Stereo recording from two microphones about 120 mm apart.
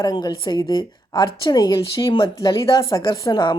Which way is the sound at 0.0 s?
35° left (ahead or behind).